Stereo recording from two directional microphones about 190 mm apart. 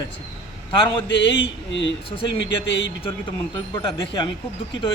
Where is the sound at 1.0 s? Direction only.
65° left (ahead or behind).